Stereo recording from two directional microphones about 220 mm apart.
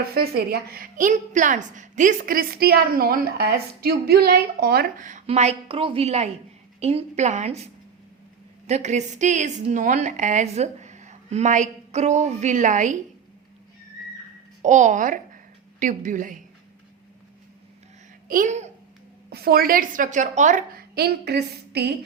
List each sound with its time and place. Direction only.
0.1 s a woman's voice: 45° right (ahead or behind)
14.6 s a woman's voice: 35° right (ahead or behind)
18.3 s speech: 35° right (ahead or behind)
19.3 s a woman's voice: 45° right (ahead or behind)